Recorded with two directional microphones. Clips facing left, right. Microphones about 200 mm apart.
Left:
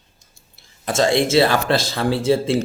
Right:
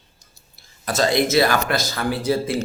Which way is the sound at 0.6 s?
25° left (ahead or behind).